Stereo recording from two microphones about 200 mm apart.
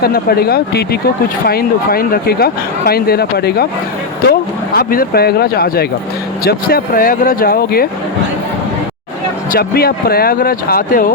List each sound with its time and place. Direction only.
0.0 s speech: 50° left (ahead or behind)
9.5 s speech: 50° left (ahead or behind)